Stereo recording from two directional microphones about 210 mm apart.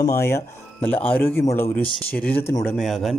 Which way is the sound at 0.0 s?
10° left (ahead or behind).